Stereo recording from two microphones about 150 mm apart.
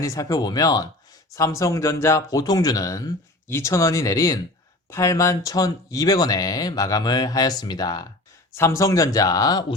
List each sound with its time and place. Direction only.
0.0 s speech: 20° left (ahead or behind)